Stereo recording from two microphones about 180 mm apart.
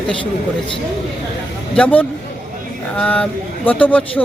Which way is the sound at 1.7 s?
10° left (ahead or behind).